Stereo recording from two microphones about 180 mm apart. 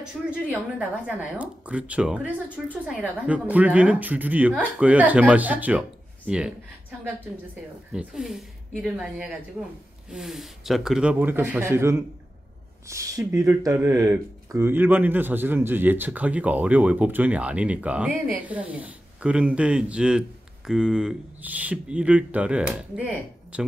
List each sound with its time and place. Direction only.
0.2 s speech: centre (ahead or behind)